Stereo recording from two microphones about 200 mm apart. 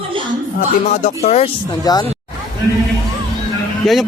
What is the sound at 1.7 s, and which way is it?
Speech, 20° left (ahead or behind).